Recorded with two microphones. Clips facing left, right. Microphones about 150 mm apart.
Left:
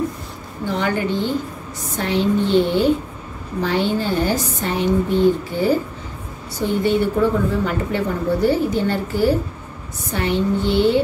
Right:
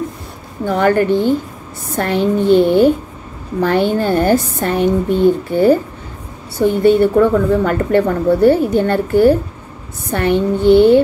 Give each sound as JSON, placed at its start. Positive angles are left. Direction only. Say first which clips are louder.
{"t": 0.7, "sound": "a woman's voice", "louder": "right 8 dB", "side_deg": -50}